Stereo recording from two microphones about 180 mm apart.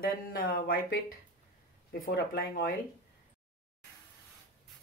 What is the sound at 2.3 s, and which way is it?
Speech, 55° left (ahead or behind).